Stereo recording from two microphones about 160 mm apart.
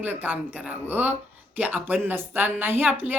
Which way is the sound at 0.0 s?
10° right (ahead or behind).